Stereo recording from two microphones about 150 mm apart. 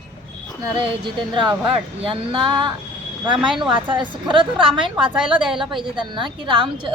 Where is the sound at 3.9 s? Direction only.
30° right (ahead or behind).